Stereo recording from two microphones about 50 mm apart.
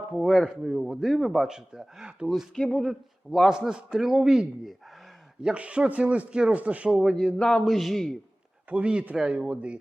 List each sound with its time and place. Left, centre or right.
0.1 s a man's voice: centre
2.6 s speech: centre
3.5 s a man's voice: centre
5.5 s speech: right
7.0 s speech: centre
8.7 s speech: right